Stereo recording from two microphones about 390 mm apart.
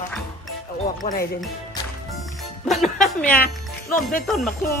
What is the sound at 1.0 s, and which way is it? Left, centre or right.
Speech, centre.